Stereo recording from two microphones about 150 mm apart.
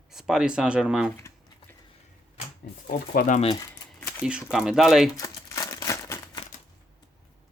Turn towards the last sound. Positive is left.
turn(degrees=20)  # may be behind; listen again after turning